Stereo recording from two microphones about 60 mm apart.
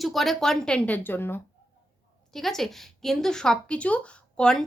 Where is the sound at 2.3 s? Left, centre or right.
Centre.